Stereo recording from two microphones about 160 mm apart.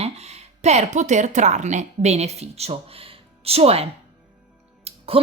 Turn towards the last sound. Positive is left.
turn(degrees=-35)  # may be behind; listen again after turning